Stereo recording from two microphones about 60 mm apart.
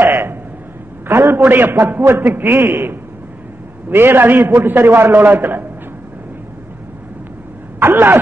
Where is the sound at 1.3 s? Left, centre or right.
Right.